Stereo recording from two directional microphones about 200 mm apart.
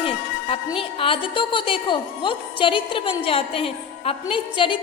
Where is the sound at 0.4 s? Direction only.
25° left (ahead or behind).